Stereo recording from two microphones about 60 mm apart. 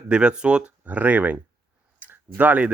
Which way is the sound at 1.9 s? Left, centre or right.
Right.